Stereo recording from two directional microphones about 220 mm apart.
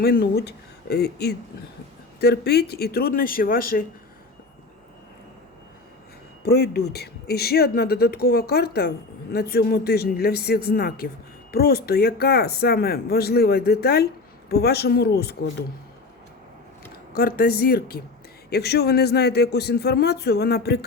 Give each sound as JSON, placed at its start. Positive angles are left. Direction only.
{"t": 0.0, "sound": "speech", "side_deg": 45}
{"t": 6.4, "sound": "speech", "side_deg": 45}
{"t": 17.2, "sound": "speech", "side_deg": 45}